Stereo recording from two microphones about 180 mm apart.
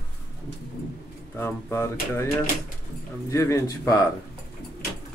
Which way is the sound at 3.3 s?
15° left (ahead or behind).